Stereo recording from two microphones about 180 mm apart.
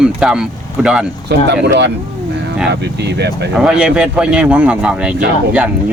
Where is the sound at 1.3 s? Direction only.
65° right (ahead or behind).